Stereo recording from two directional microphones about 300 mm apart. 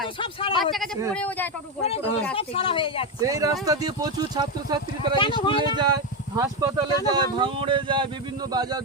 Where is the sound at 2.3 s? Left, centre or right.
Centre.